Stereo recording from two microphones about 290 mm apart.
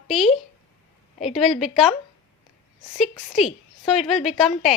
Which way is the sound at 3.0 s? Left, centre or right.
Centre.